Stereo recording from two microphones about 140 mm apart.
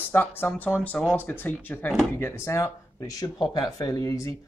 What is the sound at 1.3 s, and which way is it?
Speech, 15° left (ahead or behind).